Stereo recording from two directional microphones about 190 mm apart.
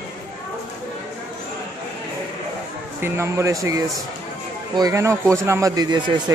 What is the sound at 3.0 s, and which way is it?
Speech, 15° right (ahead or behind).